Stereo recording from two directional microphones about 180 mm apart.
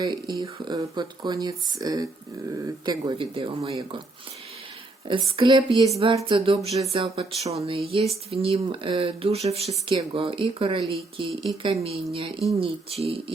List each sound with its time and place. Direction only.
0.0 s speech: 25° right (ahead or behind)
5.0 s speech: 25° right (ahead or behind)